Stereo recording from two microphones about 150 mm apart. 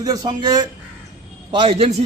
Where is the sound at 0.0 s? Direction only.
25° right (ahead or behind).